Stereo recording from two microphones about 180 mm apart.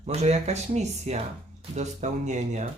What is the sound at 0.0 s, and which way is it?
Speech, 35° right (ahead or behind).